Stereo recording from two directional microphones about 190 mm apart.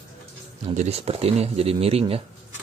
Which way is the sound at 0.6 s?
35° right (ahead or behind).